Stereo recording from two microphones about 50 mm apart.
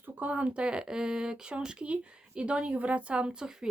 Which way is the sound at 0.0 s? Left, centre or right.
Right.